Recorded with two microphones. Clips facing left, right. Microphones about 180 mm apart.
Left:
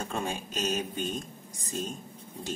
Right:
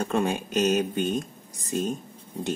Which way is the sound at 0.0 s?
65° right (ahead or behind).